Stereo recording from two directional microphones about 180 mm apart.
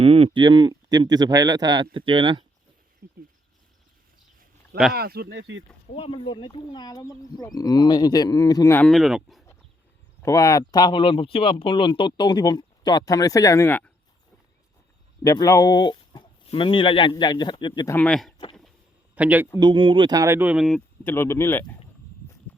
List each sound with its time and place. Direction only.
0.0 s speech: 30° right (ahead or behind)
3.0 s a sound: 55° right (ahead or behind)
4.9 s speech: 60° right (ahead or behind); by 5.6 s 85° right
5.9 s speech: 30° left (ahead or behind); by 8.9 s 15° left (ahead or behind)
8.9 s speech: centre (ahead or behind)
10.2 s speech: 20° left (ahead or behind)
15.2 s speech: 20° left (ahead or behind)
17.9 s speech: 5° left (ahead or behind)
19.1 s a man's voice: 10° right (ahead or behind)
19.5 s speech: 25° right (ahead or behind); by 20.8 s centre (ahead or behind)
21.0 s speech: 10° left (ahead or behind)